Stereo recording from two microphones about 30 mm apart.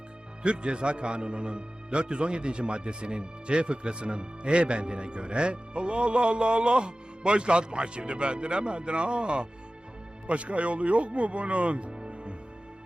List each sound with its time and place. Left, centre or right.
0.4 s a man's voice: right
10.2 s speech: right